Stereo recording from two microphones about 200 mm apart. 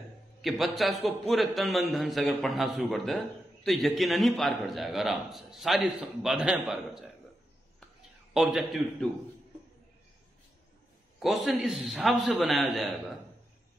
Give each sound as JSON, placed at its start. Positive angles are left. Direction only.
{"t": 0.4, "sound": "a man's voice", "side_deg": 0}
{"t": 8.3, "sound": "a man's voice", "side_deg": -5}
{"t": 11.1, "sound": "a man's voice", "side_deg": 0}